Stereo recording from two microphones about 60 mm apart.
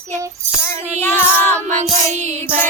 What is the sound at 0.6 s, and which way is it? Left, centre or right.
Child singing, left.